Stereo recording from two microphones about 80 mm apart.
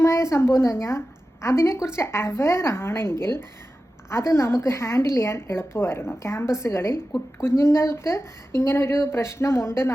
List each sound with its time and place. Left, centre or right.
0.0 s a woman's voice: left